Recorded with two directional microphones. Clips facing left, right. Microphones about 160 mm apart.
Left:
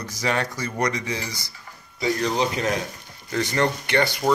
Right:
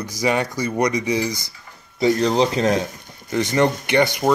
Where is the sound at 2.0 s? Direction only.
30° right (ahead or behind).